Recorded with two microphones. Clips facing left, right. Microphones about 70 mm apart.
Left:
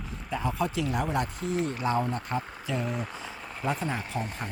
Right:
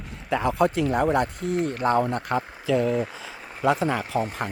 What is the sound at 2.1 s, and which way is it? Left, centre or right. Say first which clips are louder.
Speech: right 5 dB; right.